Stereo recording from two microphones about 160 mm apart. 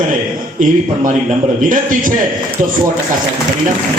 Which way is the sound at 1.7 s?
55° right (ahead or behind).